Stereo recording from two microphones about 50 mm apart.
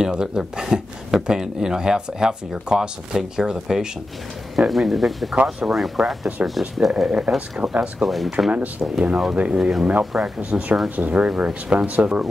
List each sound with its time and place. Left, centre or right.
0.0 s speech: centre
5.3 s speech: right
5.8 s speech: centre
6.4 s speech: right